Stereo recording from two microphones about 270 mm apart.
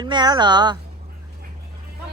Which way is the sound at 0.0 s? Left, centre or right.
Centre.